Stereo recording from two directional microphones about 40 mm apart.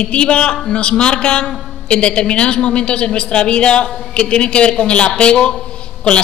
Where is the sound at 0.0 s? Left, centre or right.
Left.